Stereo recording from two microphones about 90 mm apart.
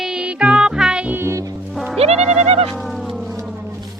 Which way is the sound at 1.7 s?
Centre (ahead or behind).